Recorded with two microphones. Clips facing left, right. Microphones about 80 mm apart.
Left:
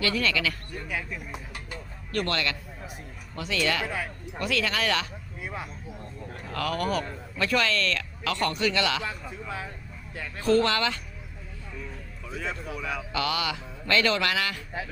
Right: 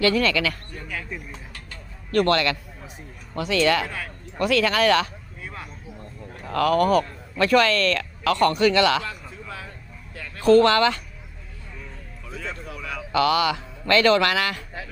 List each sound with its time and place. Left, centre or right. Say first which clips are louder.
0.0 s speech: right 6 dB; right
1.3 s a sound: left 2 dB; centre
2.1 s speech: right 8 dB; right
3.8 s speech: left 1 dB; centre
4.4 s speech: right 8 dB; right
5.4 s a sound: left 2 dB; centre
6.5 s speech: right 9 dB; right
10.4 s speech: right 7 dB; right
12.3 s speech: left 1 dB; centre
13.1 s speech: right 10 dB; right